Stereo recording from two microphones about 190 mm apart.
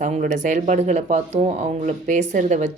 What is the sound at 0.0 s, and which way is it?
Speech, 40° right (ahead or behind).